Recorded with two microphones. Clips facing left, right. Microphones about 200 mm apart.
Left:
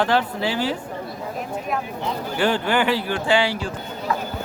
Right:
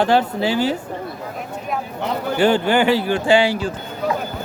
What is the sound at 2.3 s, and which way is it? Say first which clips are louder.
A man's voice: right 5 dB; 25° right (ahead or behind).